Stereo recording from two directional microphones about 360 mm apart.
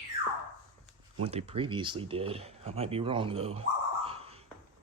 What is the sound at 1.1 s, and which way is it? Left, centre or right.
Speech, centre.